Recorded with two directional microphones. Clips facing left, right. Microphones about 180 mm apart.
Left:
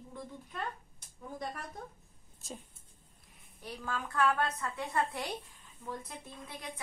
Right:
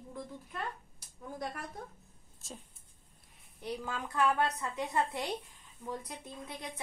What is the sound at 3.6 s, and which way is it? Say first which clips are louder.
A woman's voice: right 1 dB; 20° right (ahead or behind).